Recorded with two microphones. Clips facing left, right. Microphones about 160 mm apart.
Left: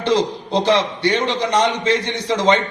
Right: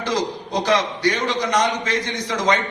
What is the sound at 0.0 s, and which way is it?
A man's voice, 30° left (ahead or behind).